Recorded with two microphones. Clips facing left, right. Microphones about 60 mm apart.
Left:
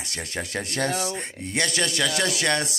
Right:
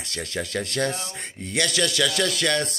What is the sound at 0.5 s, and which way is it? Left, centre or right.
Speech, centre.